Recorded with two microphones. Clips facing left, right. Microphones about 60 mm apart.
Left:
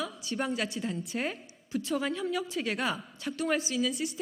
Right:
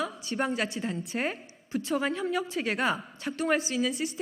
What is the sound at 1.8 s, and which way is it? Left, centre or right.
Speech, right.